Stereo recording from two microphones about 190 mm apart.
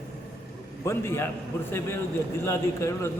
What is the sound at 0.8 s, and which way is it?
Speech, 15° left (ahead or behind).